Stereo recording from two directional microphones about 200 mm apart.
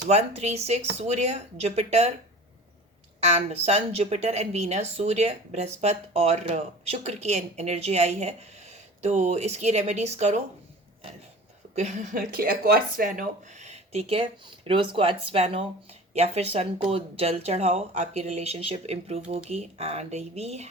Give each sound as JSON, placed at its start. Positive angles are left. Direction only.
{"t": 0.1, "sound": "a woman's voice", "side_deg": -30}
{"t": 3.2, "sound": "a woman's voice", "side_deg": -35}
{"t": 11.7, "sound": "a woman's voice", "side_deg": -35}